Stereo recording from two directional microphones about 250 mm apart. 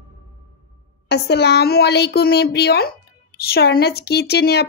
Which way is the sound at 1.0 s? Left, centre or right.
Left.